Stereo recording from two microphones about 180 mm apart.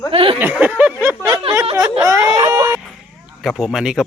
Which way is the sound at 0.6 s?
10° right (ahead or behind).